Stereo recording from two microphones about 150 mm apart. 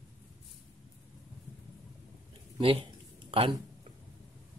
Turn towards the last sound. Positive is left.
turn(degrees=-35)  # may be behind; listen again after turning